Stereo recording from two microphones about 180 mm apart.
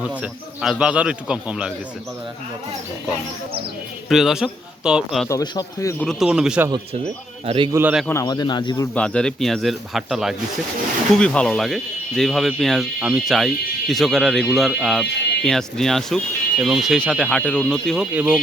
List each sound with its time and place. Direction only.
0.0 s speech: 5° right (ahead or behind)
4.1 s speech: centre (ahead or behind)
5.3 s a man's voice: 20° left (ahead or behind)
6.1 s speech: 5° right (ahead or behind)
7.4 s a man's voice: 30° right (ahead or behind)
7.7 s a man's voice: 10° right (ahead or behind)
8.0 s speech: 20° left (ahead or behind)
9.0 s speech: 5° left (ahead or behind)